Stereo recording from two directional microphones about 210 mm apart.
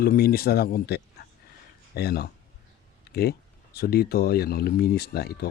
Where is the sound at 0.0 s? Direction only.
45° left (ahead or behind).